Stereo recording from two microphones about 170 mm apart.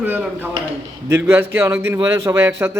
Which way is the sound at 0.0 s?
10° right (ahead or behind).